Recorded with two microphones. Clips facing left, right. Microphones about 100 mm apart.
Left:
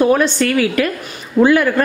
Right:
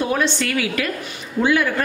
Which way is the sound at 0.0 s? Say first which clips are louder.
Left 7 dB; 45° left (ahead or behind).